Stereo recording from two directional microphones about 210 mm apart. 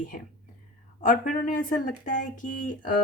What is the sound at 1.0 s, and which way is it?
Speech, 40° left (ahead or behind).